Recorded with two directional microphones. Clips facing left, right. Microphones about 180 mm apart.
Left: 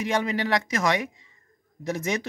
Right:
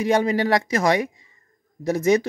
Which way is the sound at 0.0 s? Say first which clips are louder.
Right 6 dB; 35° right (ahead or behind).